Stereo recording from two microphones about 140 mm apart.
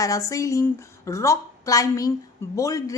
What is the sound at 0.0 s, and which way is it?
A woman's voice, 25° left (ahead or behind).